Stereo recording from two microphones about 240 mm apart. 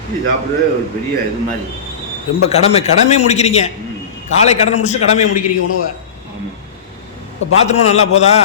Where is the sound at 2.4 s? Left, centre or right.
Left.